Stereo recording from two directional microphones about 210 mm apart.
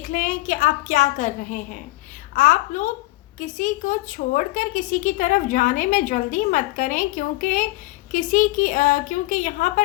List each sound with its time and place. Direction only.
0.0 s a woman's voice: 40° left (ahead or behind)